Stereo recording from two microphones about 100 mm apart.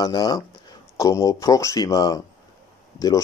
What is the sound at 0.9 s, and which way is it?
Speech, 30° left (ahead or behind).